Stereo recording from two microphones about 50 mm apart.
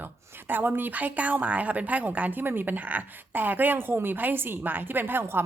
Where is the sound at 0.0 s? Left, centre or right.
Right.